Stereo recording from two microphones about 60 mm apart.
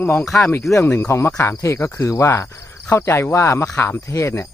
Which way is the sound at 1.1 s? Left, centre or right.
Left.